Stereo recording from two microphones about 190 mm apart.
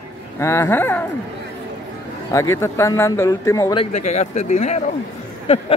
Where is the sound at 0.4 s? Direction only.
15° left (ahead or behind).